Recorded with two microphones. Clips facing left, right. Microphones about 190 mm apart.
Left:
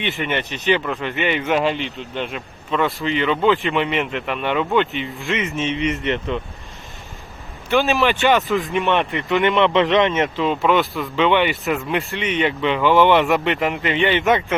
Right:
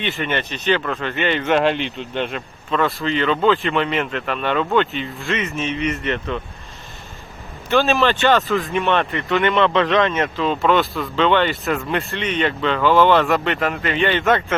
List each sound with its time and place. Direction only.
0.0 s a man's voice: 15° left (ahead or behind)
7.7 s speech: 15° left (ahead or behind)